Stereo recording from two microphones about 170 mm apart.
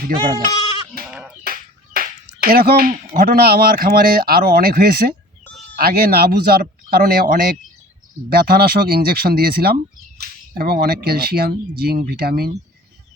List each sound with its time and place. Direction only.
1.0 s a sound: centre (ahead or behind)
1.5 s finger snapping: 60° right (ahead or behind)
3.2 s speech: 60° right (ahead or behind)